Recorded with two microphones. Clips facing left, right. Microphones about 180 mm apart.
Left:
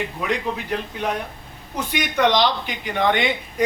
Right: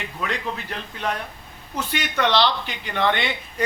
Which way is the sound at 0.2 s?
15° left (ahead or behind).